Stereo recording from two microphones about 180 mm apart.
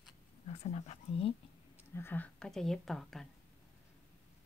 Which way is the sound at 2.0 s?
10° left (ahead or behind).